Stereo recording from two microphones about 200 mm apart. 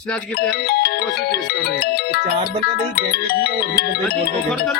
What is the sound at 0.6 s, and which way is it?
Speech, 55° left (ahead or behind).